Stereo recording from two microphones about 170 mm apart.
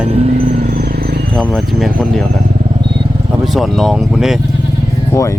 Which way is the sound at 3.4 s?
Centre (ahead or behind).